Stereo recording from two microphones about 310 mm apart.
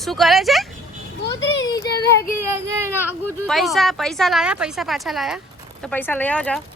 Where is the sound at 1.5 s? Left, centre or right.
Left.